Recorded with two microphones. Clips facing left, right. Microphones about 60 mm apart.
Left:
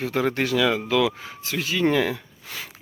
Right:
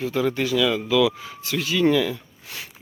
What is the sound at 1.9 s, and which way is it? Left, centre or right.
Speech, left.